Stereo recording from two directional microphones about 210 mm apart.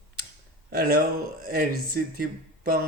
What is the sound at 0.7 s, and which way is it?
Speech, 45° right (ahead or behind).